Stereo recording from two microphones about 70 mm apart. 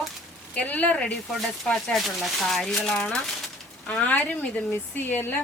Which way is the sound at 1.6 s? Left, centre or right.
Centre.